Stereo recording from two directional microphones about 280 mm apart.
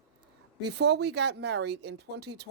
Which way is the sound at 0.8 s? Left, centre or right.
Right.